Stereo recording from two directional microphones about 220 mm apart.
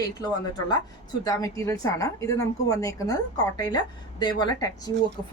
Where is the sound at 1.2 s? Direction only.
15° left (ahead or behind).